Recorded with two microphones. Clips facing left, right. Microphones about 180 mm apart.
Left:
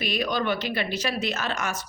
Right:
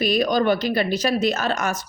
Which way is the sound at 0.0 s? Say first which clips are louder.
Right 7 dB; 40° right (ahead or behind).